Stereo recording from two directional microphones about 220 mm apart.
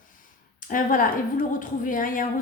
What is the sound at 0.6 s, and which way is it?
Speech, 40° left (ahead or behind).